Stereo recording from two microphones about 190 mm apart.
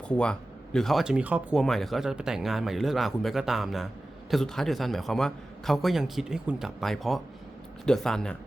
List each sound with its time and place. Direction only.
0.2 s speech: 5° left (ahead or behind)